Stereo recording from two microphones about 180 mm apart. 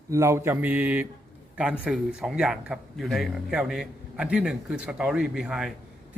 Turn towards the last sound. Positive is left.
turn(degrees=-5)  # may be behind; listen again after turning